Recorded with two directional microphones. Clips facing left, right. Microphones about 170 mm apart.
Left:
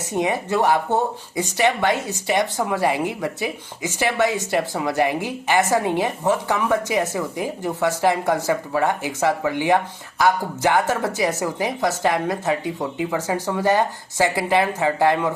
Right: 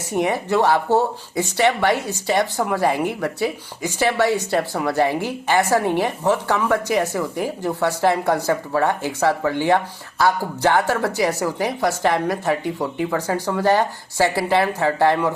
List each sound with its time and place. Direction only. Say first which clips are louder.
0.0 s a woman's voice: right 1 dB; 20° left (ahead or behind)